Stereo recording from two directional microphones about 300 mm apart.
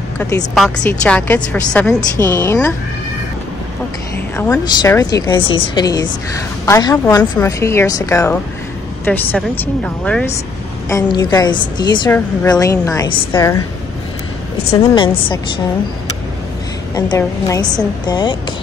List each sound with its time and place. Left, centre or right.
0.6 s a woman's voice: centre
4.4 s a woman's voice: centre
14.7 s a woman's voice: centre
16.9 s a woman's voice: centre